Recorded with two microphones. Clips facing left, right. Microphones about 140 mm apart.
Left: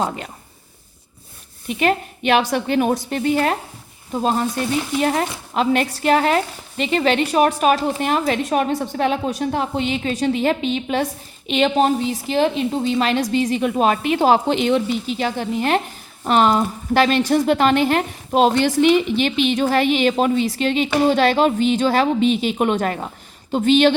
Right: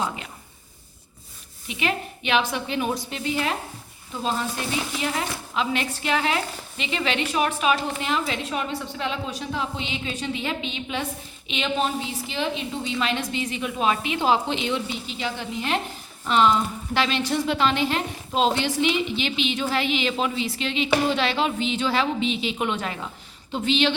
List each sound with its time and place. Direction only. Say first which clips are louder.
1.6 s speech: left 8 dB; 50° left (ahead or behind)